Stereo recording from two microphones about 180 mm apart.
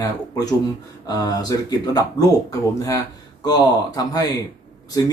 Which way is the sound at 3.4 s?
20° left (ahead or behind).